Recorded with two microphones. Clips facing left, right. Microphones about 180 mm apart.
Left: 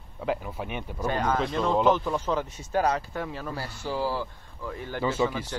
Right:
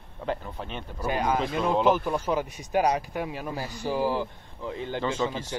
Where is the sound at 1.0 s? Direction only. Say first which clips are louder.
Even; 10° right (ahead or behind).